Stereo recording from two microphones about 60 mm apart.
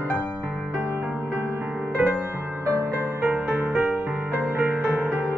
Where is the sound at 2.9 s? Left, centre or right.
Right.